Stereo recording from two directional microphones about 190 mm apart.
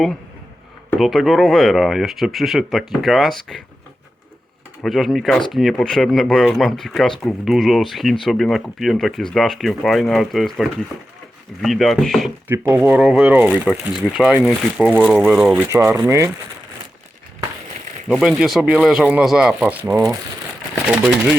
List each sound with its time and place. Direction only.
0.9 s speech: centre (ahead or behind)
4.8 s speech: centre (ahead or behind)
12.5 s speech: 10° right (ahead or behind)
15.7 s speech: 15° right (ahead or behind)
18.1 s speech: centre (ahead or behind)